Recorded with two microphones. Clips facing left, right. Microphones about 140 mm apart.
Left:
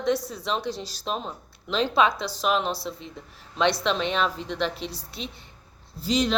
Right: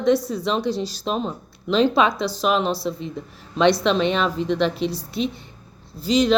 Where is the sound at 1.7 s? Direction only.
Centre (ahead or behind).